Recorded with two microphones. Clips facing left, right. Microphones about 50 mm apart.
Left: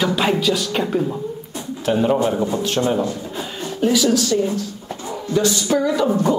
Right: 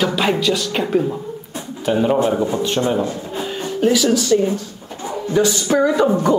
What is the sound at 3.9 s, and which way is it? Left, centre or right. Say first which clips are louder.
Speech: right 2 dB; centre.